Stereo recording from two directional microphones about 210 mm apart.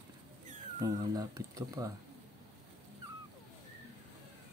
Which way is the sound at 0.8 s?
15° right (ahead or behind).